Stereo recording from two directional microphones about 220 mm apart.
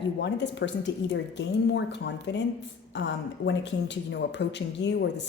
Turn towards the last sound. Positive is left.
turn(degrees=55)  # may be behind; listen again after turning